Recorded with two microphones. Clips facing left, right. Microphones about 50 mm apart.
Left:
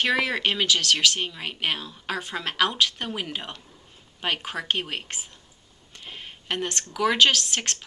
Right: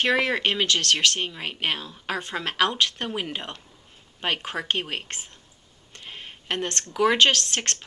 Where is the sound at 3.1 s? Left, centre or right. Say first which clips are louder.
Right 1 dB; right.